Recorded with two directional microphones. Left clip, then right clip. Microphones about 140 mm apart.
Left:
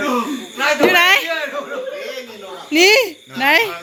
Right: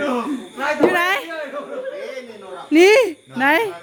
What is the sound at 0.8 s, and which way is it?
Speech, 30° right (ahead or behind).